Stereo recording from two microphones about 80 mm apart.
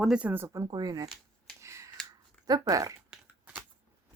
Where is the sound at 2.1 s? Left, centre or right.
Right.